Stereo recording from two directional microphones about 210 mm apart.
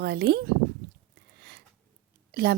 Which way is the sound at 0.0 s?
50° right (ahead or behind).